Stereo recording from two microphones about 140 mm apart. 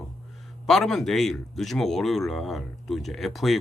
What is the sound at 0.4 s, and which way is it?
A man's voice, centre (ahead or behind).